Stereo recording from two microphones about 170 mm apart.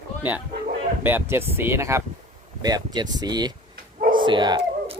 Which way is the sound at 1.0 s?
15° right (ahead or behind).